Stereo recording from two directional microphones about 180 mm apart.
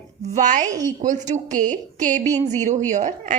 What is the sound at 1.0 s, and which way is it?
Speech, 45° right (ahead or behind).